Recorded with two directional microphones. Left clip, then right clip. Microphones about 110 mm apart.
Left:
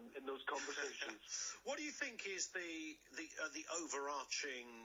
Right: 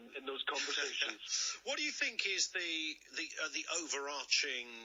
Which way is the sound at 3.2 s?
20° right (ahead or behind).